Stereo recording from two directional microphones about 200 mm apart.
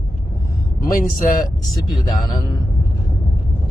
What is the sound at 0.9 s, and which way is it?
Speech, 45° left (ahead or behind).